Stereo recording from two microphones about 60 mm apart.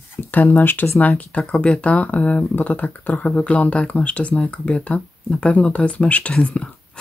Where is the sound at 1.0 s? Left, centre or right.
Left.